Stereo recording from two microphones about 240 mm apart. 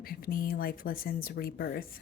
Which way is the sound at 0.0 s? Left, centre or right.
Left.